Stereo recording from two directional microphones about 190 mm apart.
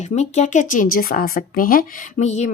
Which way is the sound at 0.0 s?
35° left (ahead or behind).